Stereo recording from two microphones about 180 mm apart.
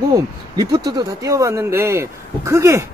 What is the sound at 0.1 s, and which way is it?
Speech, 20° right (ahead or behind).